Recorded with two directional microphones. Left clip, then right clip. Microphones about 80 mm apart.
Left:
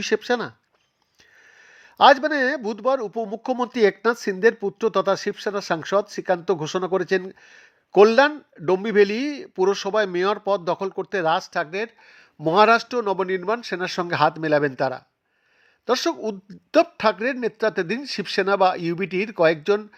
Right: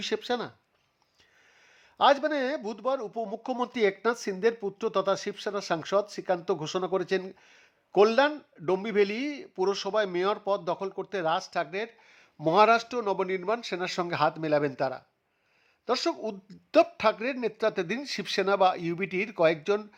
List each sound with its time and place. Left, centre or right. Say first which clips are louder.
0.0 s speech: left 8 dB; left
1.5 s a sound: left 10 dB; left
2.1 s speech: left 7 dB; left